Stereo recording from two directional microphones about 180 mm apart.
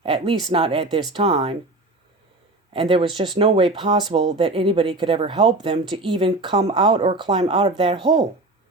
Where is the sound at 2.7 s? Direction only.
30° right (ahead or behind).